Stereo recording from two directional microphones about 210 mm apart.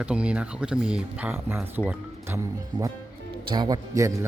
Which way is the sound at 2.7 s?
20° right (ahead or behind).